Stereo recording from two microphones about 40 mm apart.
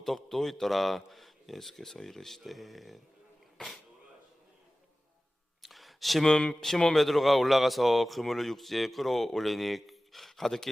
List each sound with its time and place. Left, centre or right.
0.0 s a man's voice: centre
5.6 s a sound: centre
6.2 s a man's voice: centre